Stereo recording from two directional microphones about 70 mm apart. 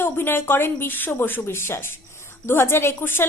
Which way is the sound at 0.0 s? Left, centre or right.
Left.